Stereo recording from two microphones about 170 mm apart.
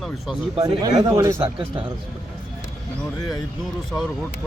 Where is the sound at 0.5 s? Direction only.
25° right (ahead or behind).